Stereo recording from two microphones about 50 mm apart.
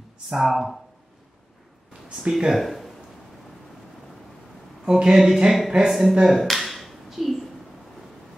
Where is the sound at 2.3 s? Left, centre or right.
Centre.